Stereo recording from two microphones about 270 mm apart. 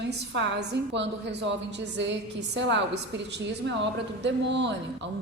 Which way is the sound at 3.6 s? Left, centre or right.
Right.